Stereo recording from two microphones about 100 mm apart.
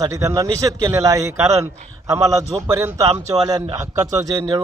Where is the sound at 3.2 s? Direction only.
40° right (ahead or behind).